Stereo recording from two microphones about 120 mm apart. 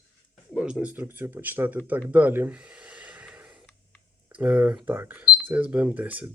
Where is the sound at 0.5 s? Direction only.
5° right (ahead or behind).